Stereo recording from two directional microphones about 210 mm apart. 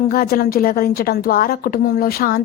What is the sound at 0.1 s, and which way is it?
A woman's voice, 45° left (ahead or behind).